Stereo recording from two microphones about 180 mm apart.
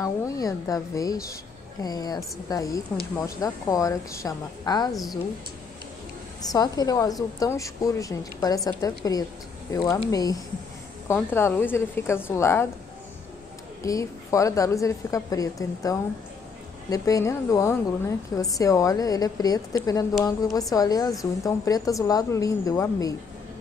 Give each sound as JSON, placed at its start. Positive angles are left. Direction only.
{"t": 0.0, "sound": "a woman's voice", "side_deg": 20}
{"t": 6.4, "sound": "a woman's voice", "side_deg": 20}
{"t": 13.8, "sound": "a woman's voice", "side_deg": 15}